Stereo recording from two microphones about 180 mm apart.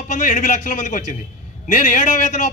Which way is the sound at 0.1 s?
45° left (ahead or behind).